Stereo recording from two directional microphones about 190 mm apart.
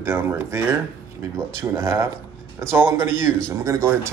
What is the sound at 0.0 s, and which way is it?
Speech, 15° right (ahead or behind).